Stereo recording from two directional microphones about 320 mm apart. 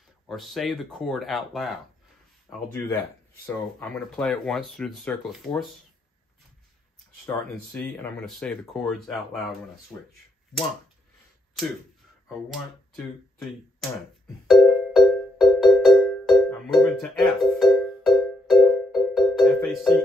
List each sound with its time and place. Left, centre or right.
0.3 s speech: centre
7.2 s speech: centre
12.9 s speech: centre
14.5 s music: centre